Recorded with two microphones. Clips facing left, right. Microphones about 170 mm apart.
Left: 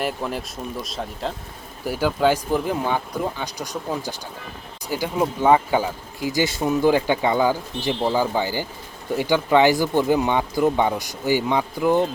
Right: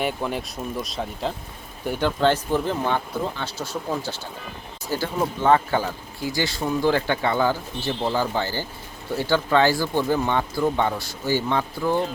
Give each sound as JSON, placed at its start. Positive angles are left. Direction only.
{"t": 0.0, "sound": "speech", "side_deg": 0}